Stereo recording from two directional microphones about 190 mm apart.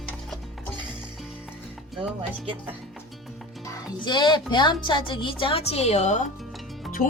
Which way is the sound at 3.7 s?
25° left (ahead or behind).